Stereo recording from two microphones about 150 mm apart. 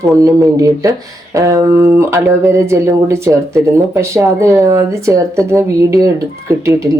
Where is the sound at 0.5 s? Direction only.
20° right (ahead or behind).